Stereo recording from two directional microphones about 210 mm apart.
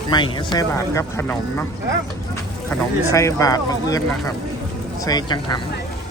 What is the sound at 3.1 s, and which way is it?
Speech, 15° left (ahead or behind).